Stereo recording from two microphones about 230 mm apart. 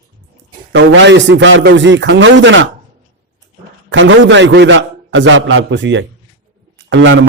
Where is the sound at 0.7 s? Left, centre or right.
Right.